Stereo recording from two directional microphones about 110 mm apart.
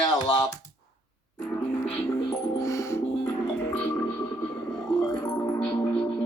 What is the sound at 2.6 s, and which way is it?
Music, 25° left (ahead or behind).